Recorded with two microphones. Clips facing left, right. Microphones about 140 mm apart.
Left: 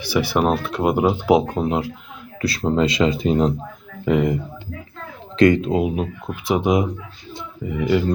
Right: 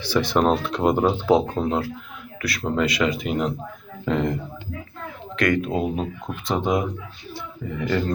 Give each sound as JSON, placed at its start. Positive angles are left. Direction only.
{"t": 0.0, "sound": "speech", "side_deg": 10}
{"t": 2.4, "sound": "speech", "side_deg": 30}
{"t": 4.0, "sound": "speech", "side_deg": 10}
{"t": 5.4, "sound": "speech", "side_deg": 25}